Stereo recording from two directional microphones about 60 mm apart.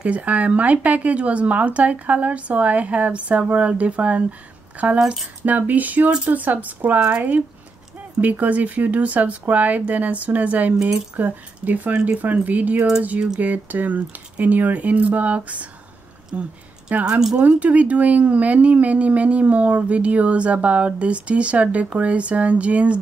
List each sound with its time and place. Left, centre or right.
0.0 s speech: right
4.9 s speech: centre
5.4 s speech: right
17.0 s speech: centre
17.4 s speech: right